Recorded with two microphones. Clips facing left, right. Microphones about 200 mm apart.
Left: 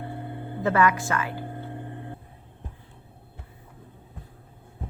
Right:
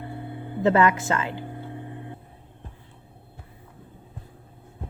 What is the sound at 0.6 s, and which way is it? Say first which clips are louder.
Speech: right 3 dB; 25° right (ahead or behind).